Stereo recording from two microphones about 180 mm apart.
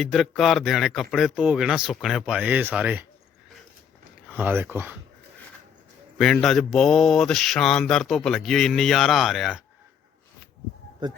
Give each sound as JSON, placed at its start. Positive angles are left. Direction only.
{"t": 0.0, "sound": "mantra", "side_deg": 0}
{"t": 4.4, "sound": "speech", "side_deg": -10}
{"t": 6.1, "sound": "mantra", "side_deg": 0}
{"t": 11.0, "sound": "speech", "side_deg": -25}